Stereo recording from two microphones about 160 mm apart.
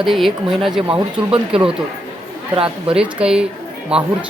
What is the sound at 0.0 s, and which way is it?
Speech, centre (ahead or behind).